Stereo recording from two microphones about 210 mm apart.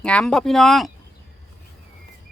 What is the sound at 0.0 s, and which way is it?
Speech, 5° left (ahead or behind).